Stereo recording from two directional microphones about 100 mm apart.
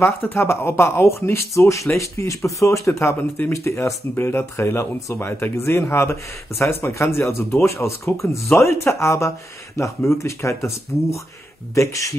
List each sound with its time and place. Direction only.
0.0 s speech: 25° left (ahead or behind)
3.5 s speech: 30° left (ahead or behind)